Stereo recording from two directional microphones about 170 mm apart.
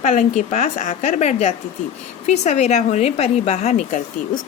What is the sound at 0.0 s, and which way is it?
Speech, 45° left (ahead or behind).